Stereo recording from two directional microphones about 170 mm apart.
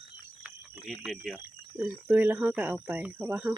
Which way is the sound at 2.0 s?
10° right (ahead or behind).